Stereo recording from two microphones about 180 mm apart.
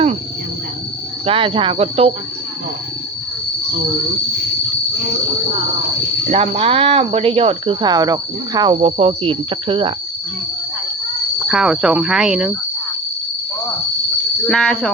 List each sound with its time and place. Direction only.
1.2 s speech: 30° right (ahead or behind)
6.3 s speech: 35° right (ahead or behind)
11.3 s cricket: 5° right (ahead or behind)
14.4 s cricket: 5° left (ahead or behind)